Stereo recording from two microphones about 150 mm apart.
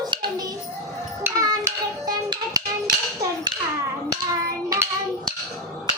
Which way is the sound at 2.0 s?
25° right (ahead or behind).